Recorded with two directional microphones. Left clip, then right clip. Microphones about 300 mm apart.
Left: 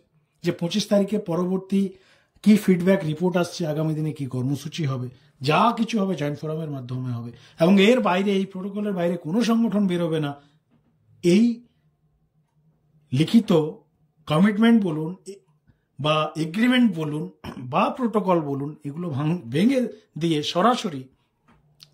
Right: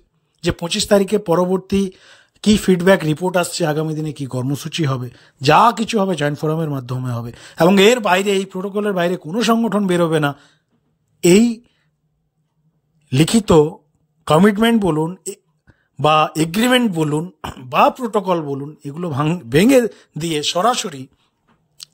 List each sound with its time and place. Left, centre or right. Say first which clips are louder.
0.4 s speech: right 6 dB; centre
13.1 s speech: right 7 dB; centre
18.2 s speech: right 3 dB; centre